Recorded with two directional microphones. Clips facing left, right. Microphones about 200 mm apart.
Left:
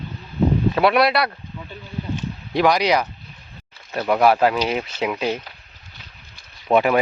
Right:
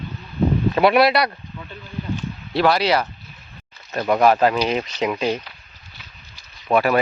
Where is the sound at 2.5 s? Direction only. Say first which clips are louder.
Even; 15° left (ahead or behind).